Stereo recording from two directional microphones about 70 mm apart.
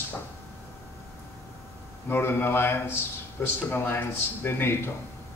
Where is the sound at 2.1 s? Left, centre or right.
Left.